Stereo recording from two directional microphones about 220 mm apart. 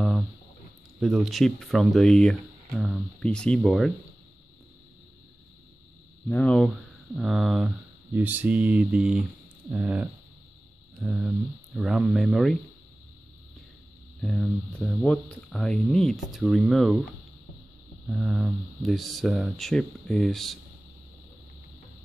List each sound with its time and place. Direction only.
0.9 s speech: centre (ahead or behind)
6.2 s speech: 5° left (ahead or behind)
14.2 s speech: 5° left (ahead or behind)
18.0 s speech: centre (ahead or behind)